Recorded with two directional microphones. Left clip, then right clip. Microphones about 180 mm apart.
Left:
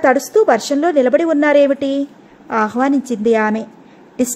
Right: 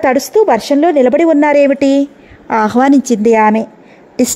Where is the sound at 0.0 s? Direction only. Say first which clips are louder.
Right 2 dB; 25° right (ahead or behind).